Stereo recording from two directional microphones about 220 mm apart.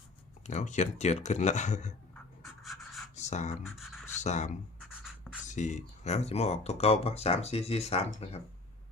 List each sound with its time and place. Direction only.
0.4 s speech: 35° left (ahead or behind)
2.4 s pant: centre (ahead or behind)
3.2 s speech: 30° left (ahead or behind)
3.8 s speech: centre (ahead or behind)
4.2 s speech: 30° left (ahead or behind)
5.0 s a sound: centre (ahead or behind)
5.5 s speech: 35° left (ahead or behind)